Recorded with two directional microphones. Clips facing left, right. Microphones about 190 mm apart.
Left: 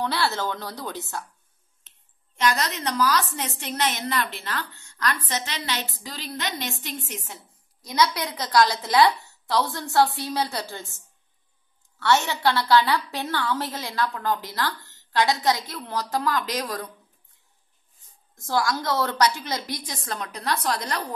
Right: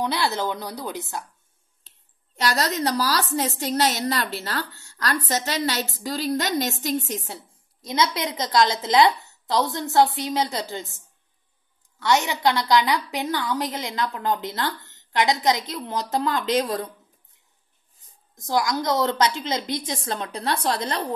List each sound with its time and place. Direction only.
0.0 s speech: 15° right (ahead or behind)
1.9 s speech: 35° right (ahead or behind); by 11.0 s 20° right (ahead or behind)
12.0 s a woman's voice: 15° right (ahead or behind)
18.3 s a woman's voice: 15° right (ahead or behind)